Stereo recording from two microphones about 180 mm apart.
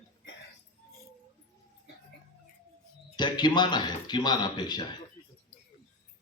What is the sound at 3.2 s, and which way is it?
A man's voice, 25° left (ahead or behind).